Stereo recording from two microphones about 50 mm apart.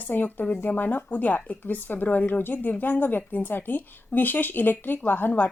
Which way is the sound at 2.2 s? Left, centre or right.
Left.